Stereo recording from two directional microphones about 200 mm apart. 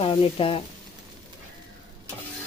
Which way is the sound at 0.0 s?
25° left (ahead or behind).